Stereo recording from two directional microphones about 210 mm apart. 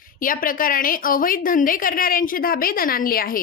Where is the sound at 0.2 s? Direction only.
40° left (ahead or behind).